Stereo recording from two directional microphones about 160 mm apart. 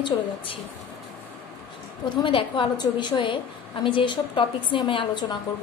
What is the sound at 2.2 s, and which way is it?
A woman's voice, 30° left (ahead or behind).